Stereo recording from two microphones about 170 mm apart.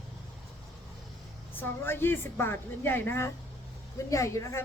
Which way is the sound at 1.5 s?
15° left (ahead or behind).